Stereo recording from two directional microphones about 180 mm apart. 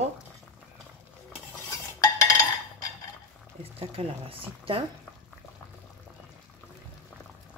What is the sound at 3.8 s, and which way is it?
Speech, 30° right (ahead or behind).